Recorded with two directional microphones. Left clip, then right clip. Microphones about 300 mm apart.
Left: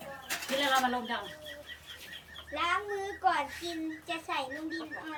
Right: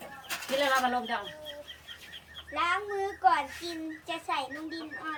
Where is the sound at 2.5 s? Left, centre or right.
Centre.